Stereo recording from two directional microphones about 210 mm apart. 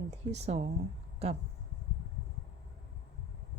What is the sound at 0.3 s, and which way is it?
Speech, 30° right (ahead or behind).